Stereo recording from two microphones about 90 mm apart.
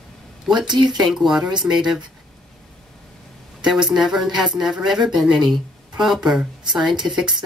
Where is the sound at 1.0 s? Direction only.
5° right (ahead or behind).